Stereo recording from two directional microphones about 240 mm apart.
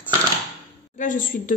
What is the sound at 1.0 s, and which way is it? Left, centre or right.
Speech, left.